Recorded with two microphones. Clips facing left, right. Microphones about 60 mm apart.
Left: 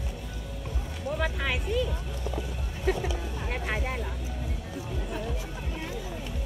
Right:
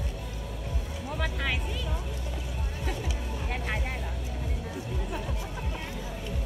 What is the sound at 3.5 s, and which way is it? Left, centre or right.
Vehicle, centre.